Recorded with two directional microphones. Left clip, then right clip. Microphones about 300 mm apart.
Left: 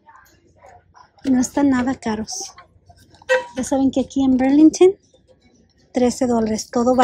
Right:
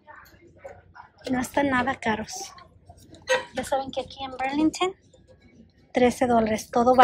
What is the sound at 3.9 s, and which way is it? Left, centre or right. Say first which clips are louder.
Speech: left 11 dB; left.